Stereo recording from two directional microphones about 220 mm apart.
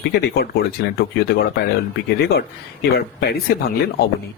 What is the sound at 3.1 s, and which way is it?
Speech, 45° left (ahead or behind).